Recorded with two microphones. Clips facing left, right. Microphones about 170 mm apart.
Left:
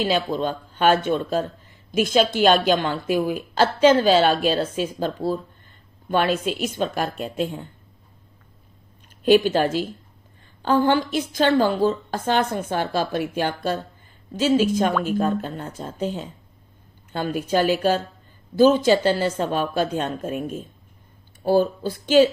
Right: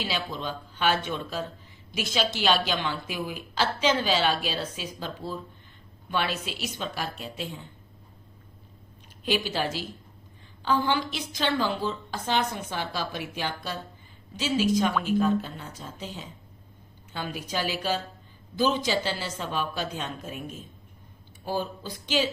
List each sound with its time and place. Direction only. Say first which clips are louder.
0.0 s a woman's voice: left 10 dB; 50° left (ahead or behind)
9.2 s a woman's voice: left 11 dB; 50° left (ahead or behind)